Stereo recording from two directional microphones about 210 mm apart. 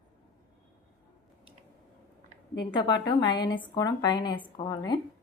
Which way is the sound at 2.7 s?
20° left (ahead or behind).